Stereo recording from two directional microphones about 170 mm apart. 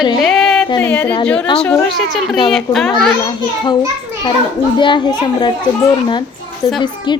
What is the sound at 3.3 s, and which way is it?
A child's voice, 25° left (ahead or behind).